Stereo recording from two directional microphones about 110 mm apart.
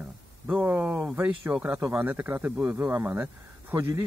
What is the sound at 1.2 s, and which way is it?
Speech, 10° right (ahead or behind).